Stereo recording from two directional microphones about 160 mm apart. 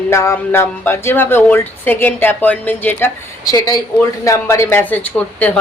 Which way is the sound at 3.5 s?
25° left (ahead or behind).